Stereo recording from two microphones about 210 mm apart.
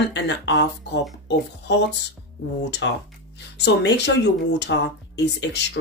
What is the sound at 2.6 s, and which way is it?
Speech, 55° left (ahead or behind).